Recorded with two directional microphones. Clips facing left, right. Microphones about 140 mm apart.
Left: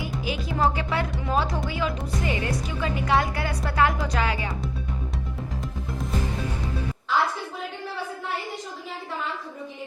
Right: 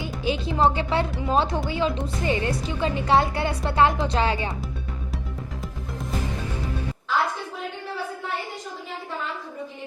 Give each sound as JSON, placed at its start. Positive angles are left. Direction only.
{"t": 0.0, "sound": "a woman's voice", "side_deg": -25}